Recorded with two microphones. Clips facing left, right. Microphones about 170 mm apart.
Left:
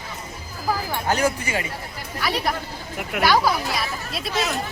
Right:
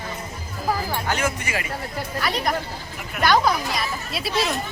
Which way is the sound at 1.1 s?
35° left (ahead or behind).